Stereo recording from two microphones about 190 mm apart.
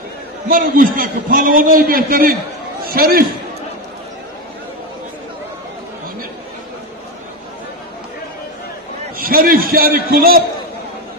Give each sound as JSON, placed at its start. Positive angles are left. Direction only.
{"t": 0.5, "sound": "a man's voice", "side_deg": -45}
{"t": 9.2, "sound": "a man's voice", "side_deg": -50}